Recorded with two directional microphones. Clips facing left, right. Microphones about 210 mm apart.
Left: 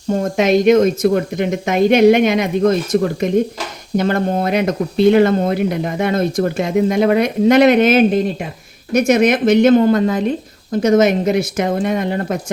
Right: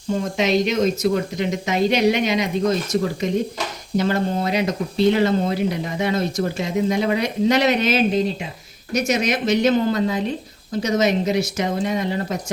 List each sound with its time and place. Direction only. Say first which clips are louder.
0.1 s speech: left 5 dB; 50° left (ahead or behind)